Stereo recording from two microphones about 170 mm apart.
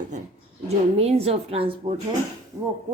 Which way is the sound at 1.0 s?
35° right (ahead or behind).